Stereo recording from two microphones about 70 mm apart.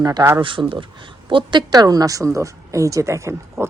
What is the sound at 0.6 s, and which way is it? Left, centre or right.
Speech, right.